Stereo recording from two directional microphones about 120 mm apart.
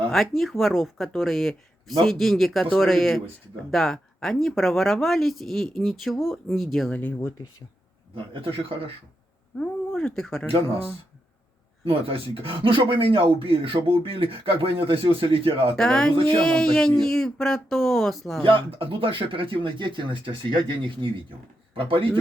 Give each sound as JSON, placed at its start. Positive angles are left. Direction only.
{"t": 0.1, "sound": "speech", "side_deg": 0}
{"t": 7.0, "sound": "speech", "side_deg": 20}
{"t": 8.1, "sound": "speech", "side_deg": -50}
{"t": 9.6, "sound": "speech", "side_deg": 5}
{"t": 11.9, "sound": "speech", "side_deg": -50}
{"t": 15.7, "sound": "speech", "side_deg": 5}
{"t": 18.4, "sound": "speech", "side_deg": -45}